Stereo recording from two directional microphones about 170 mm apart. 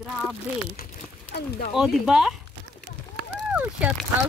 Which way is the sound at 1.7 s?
Centre (ahead or behind).